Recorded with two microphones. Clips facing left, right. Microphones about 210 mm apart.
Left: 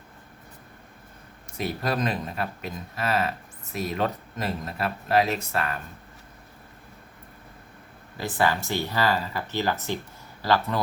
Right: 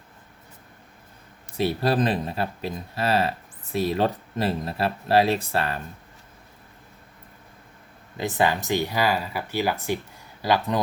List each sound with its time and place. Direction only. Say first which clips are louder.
1.5 s speech: right 5 dB; 30° right (ahead or behind)
8.2 s speech: right 2 dB; 20° right (ahead or behind)